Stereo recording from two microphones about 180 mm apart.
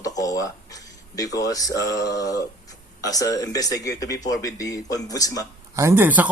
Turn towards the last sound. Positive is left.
turn(degrees=-10)  # may be behind; listen again after turning